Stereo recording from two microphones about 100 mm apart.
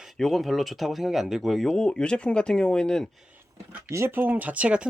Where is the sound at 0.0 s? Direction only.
Centre (ahead or behind).